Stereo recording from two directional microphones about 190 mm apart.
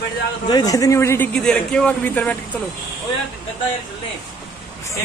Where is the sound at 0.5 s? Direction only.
20° left (ahead or behind).